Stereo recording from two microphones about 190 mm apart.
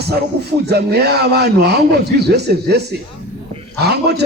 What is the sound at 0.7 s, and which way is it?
A man's voice, 60° right (ahead or behind).